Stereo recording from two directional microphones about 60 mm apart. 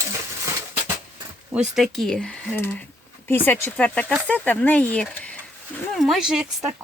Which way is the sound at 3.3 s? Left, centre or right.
Left.